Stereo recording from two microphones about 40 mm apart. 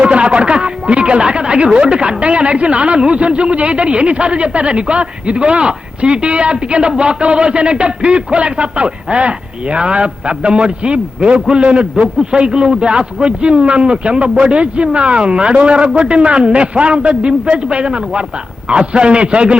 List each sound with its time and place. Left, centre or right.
0.0 s speech: right